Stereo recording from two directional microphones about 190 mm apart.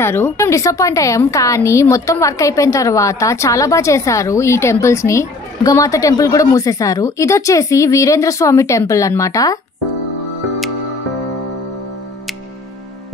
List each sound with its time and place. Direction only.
0.0 s a woman's voice: 10° left (ahead or behind)